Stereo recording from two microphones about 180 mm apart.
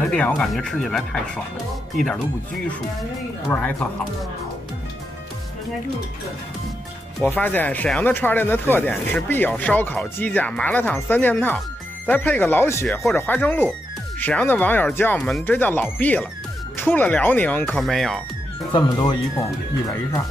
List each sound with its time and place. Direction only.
0.0 s speech: 5° left (ahead or behind)
3.4 s speech: 5° left (ahead or behind)
7.2 s speech: 10° left (ahead or behind)
18.7 s speech: 25° left (ahead or behind)